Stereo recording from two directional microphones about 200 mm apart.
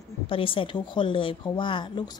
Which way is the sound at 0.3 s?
25° left (ahead or behind).